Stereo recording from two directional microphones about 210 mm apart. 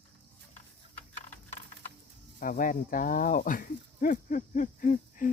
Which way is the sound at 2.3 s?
40° left (ahead or behind).